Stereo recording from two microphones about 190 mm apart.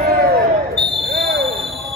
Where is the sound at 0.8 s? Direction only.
60° right (ahead or behind).